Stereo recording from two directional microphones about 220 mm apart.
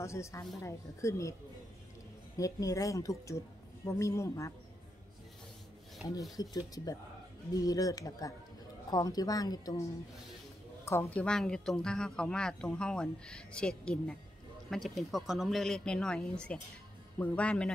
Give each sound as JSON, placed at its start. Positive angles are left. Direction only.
{"t": 0.0, "sound": "speech", "side_deg": 15}
{"t": 2.3, "sound": "speech", "side_deg": 15}
{"t": 6.3, "sound": "speech", "side_deg": 15}
{"t": 10.9, "sound": "a woman's voice", "side_deg": 10}